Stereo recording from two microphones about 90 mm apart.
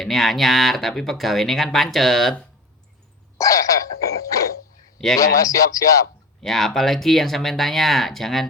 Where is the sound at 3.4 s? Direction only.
40° left (ahead or behind).